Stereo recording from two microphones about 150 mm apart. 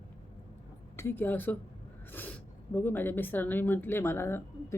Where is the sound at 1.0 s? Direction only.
15° left (ahead or behind).